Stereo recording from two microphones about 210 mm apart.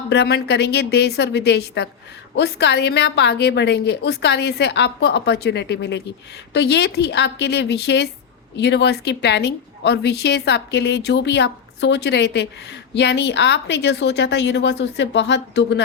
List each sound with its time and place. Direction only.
0.1 s a woman's voice: 50° left (ahead or behind)